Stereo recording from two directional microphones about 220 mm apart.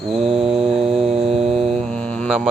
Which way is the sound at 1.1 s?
25° right (ahead or behind).